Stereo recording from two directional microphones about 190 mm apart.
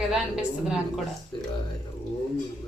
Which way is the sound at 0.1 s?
5° right (ahead or behind).